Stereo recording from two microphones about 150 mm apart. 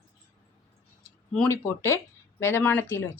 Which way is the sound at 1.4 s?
15° left (ahead or behind).